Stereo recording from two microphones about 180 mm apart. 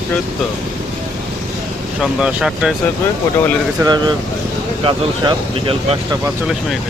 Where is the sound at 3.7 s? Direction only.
25° right (ahead or behind).